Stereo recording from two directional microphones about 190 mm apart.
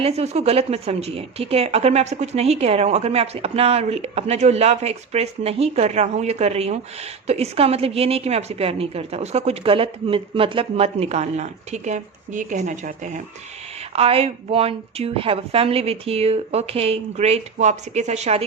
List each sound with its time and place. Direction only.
0.0 s a woman's voice: 35° right (ahead or behind)